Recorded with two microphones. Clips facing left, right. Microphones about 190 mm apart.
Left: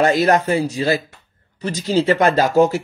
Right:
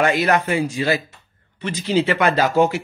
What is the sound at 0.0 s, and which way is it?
A man's voice, 40° left (ahead or behind).